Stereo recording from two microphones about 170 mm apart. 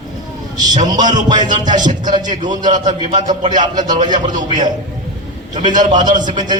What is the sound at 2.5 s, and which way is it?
Speech, 25° right (ahead or behind).